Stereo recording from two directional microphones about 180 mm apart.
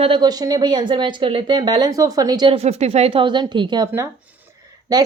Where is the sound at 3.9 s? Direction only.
10° right (ahead or behind).